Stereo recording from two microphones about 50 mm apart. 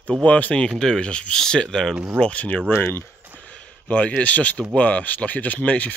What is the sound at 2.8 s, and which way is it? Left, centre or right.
Speech, left.